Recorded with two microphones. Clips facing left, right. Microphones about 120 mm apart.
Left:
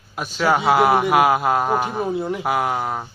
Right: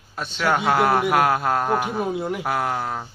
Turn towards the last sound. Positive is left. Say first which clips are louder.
# left 3 dB
turn(degrees=10)  # may be behind; listen again after turning